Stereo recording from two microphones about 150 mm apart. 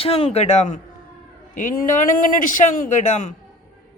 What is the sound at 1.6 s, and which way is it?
A man's voice, 65° left (ahead or behind).